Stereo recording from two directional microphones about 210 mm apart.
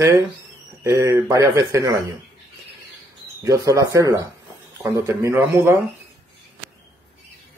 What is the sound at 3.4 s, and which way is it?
Speech, 15° right (ahead or behind).